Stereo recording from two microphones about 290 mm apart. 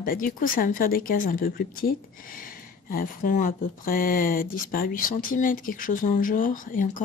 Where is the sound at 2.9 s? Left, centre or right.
Left.